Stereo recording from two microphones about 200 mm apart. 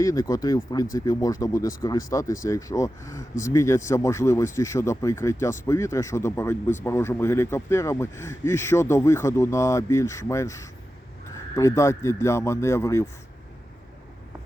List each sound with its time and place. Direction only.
0.0 s speech: 15° left (ahead or behind)